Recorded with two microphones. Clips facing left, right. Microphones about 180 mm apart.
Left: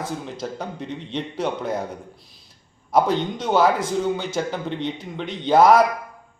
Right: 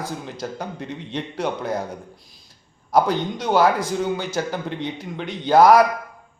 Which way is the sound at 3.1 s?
30° left (ahead or behind).